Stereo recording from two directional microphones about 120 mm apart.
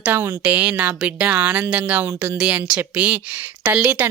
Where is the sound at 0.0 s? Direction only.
20° right (ahead or behind).